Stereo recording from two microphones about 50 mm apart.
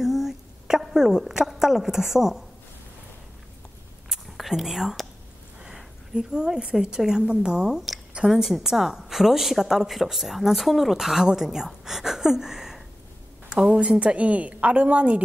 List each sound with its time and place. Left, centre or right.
0.0 s a woman's voice: centre
4.1 s whispering: centre
5.8 s a woman's voice: centre
8.3 s a woman's voice: centre
13.5 s a woman's voice: right